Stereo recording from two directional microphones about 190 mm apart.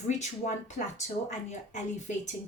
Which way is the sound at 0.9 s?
40° left (ahead or behind).